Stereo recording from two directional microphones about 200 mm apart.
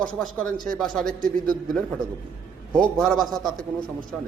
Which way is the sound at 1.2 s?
45° right (ahead or behind).